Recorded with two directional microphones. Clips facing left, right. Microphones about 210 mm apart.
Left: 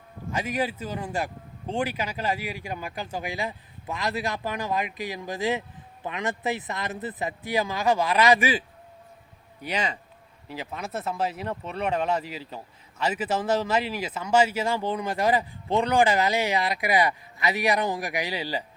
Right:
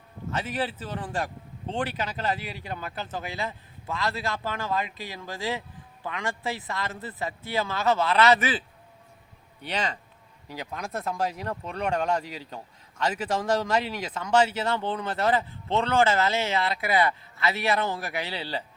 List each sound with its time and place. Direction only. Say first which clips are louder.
0.3 s speech: left 2 dB; 10° left (ahead or behind)